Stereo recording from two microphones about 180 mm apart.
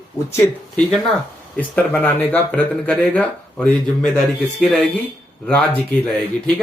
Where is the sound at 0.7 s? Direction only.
Centre (ahead or behind).